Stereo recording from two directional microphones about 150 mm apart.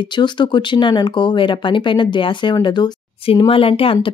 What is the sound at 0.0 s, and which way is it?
Speech, 30° left (ahead or behind).